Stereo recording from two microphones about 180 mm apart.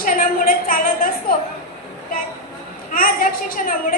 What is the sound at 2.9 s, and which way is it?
A woman's voice, 50° left (ahead or behind).